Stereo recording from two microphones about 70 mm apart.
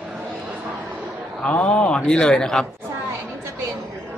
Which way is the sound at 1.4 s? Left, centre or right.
Centre.